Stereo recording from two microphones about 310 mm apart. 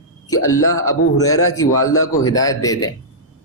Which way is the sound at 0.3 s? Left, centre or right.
Left.